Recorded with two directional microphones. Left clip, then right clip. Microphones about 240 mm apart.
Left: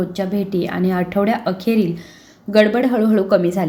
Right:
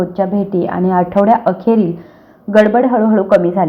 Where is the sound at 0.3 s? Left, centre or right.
Centre.